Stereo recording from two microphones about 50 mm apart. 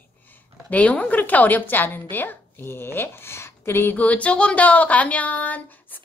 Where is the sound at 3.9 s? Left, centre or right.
Left.